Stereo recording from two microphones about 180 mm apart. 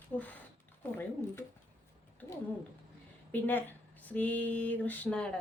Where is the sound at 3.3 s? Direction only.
10° left (ahead or behind).